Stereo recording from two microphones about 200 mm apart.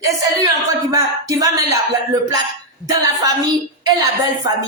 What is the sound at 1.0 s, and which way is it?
Speech, 15° right (ahead or behind).